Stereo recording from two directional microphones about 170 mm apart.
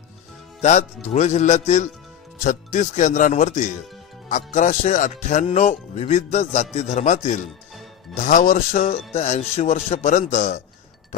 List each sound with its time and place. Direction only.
0.6 s speech: 40° left (ahead or behind)